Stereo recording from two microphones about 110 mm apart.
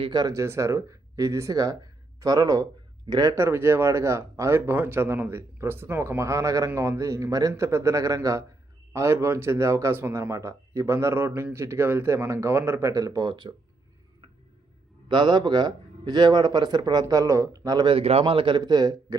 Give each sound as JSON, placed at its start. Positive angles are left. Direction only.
{"t": 0.0, "sound": "speech", "side_deg": -40}
{"t": 0.3, "sound": "speech", "side_deg": -25}
{"t": 3.3, "sound": "speech", "side_deg": -20}
{"t": 15.1, "sound": "speech", "side_deg": -45}
{"t": 17.9, "sound": "speech", "side_deg": -65}